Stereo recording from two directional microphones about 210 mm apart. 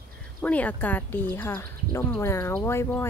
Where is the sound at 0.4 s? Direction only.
5° left (ahead or behind).